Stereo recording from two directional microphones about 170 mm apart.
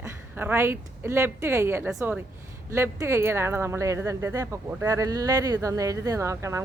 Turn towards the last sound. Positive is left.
turn(degrees=-15)  # may be behind; listen again after turning